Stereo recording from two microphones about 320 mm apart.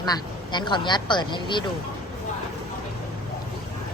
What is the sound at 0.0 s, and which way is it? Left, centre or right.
Speech, centre.